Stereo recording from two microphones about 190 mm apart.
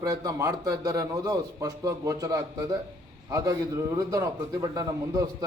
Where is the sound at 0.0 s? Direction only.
20° right (ahead or behind).